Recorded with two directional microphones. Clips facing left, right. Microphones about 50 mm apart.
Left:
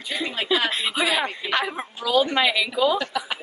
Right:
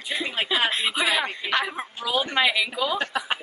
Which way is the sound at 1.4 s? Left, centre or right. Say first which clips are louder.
Left 1 dB; centre.